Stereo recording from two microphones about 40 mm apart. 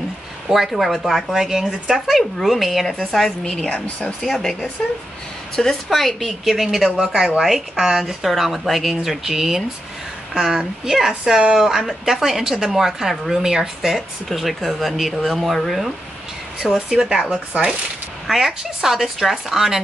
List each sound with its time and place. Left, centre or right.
0.5 s speech: centre
3.1 s a woman's voice: centre
5.9 s speech: centre
7.7 s speech: centre
8.0 s speech: centre
13.9 s speech: centre
16.7 s speech: centre